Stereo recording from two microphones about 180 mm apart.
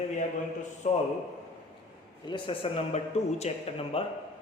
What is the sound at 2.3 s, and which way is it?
A man's voice, 30° left (ahead or behind).